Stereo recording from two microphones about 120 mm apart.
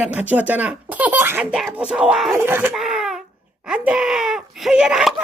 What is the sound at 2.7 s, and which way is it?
Speech, 5° right (ahead or behind).